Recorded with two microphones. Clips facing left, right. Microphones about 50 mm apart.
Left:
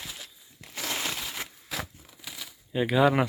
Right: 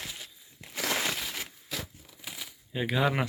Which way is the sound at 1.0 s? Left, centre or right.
Centre.